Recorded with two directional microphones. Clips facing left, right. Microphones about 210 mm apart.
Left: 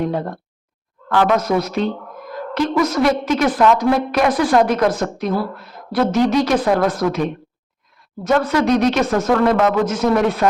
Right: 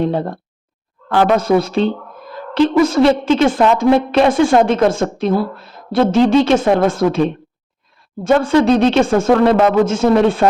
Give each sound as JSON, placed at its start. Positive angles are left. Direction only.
{"t": 0.0, "sound": "a woman's voice", "side_deg": -30}